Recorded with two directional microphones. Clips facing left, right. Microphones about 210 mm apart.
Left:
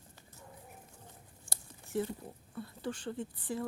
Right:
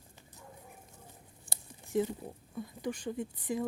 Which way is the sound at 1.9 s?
15° right (ahead or behind).